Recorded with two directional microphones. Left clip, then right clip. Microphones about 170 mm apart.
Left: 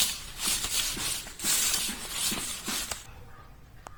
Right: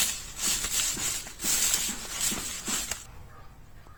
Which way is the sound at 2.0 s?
Centre (ahead or behind).